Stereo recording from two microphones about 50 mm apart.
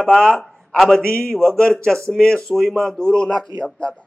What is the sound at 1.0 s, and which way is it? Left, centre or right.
Speech, centre.